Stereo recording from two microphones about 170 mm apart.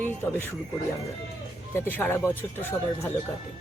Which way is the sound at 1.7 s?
15° left (ahead or behind).